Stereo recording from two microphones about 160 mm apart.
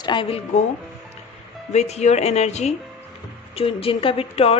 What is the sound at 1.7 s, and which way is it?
A woman's voice, 45° left (ahead or behind).